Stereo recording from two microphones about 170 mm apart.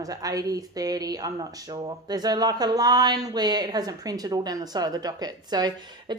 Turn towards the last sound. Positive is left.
turn(degrees=-25)  # may be behind; listen again after turning